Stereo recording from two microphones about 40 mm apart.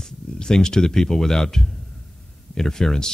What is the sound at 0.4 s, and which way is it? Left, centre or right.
Speech, centre.